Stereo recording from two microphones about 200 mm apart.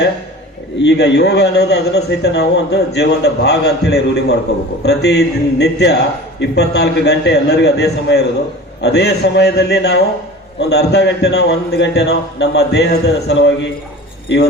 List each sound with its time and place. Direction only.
0.8 s a man's voice: 60° left (ahead or behind)